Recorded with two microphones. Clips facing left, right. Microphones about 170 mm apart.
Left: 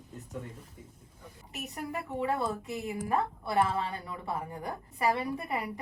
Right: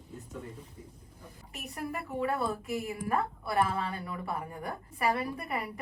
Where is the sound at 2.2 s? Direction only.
20° left (ahead or behind).